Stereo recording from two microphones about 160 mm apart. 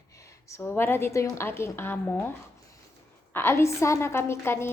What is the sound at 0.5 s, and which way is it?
A woman's voice, 10° left (ahead or behind).